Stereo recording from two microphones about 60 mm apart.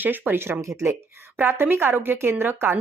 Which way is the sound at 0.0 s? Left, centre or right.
Right.